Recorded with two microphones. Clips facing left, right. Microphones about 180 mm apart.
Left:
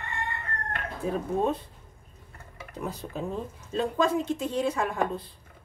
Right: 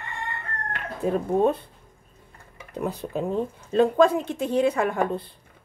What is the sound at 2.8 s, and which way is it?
Speech, 60° right (ahead or behind).